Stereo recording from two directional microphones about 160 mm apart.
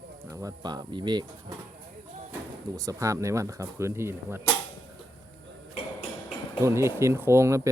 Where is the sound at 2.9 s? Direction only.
20° right (ahead or behind).